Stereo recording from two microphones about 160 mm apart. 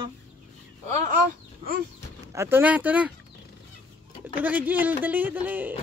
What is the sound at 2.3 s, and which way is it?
Speech, 15° right (ahead or behind).